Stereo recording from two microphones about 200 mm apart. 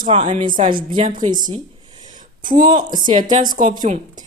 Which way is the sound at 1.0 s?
40° right (ahead or behind).